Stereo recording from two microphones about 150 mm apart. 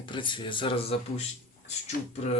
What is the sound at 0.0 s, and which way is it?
Speech, 30° left (ahead or behind).